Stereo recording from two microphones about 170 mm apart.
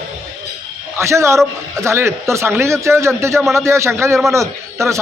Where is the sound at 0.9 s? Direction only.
15° right (ahead or behind).